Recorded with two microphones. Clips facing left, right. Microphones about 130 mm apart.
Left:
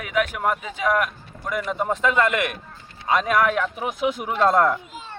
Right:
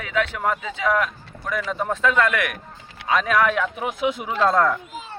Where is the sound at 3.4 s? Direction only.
5° left (ahead or behind).